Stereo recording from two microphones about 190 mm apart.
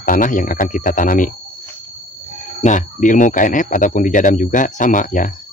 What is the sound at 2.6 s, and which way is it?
Speech, 40° left (ahead or behind).